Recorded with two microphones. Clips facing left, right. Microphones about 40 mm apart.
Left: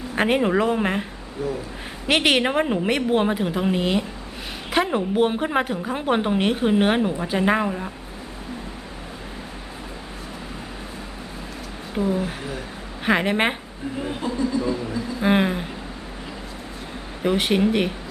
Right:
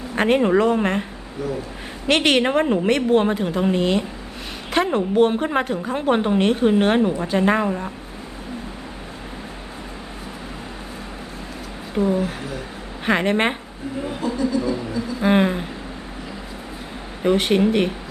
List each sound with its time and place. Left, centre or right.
0.2 s a woman's voice: centre
2.0 s a woman's voice: centre
11.9 s a woman's voice: centre
14.1 s speech: left
15.2 s a sound: centre
17.2 s a woman's voice: centre